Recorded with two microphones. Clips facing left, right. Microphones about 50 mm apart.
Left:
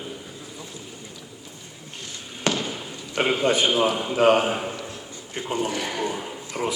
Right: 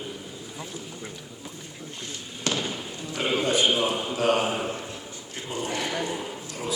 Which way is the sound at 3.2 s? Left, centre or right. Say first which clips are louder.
Left 2 dB; left.